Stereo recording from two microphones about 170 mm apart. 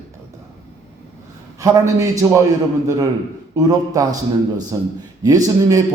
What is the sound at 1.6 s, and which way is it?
Speech, 20° right (ahead or behind).